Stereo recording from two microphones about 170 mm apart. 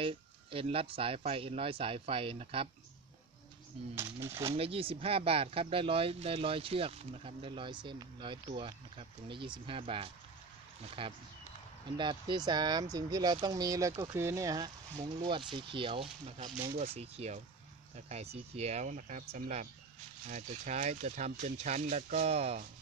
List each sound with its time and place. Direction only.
0.0 s speech: 35° right (ahead or behind)
3.9 s speech: 15° right (ahead or behind)
4.5 s speech: 35° right (ahead or behind)